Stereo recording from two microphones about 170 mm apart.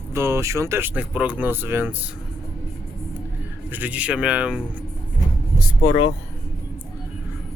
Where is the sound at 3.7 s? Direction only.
10° right (ahead or behind).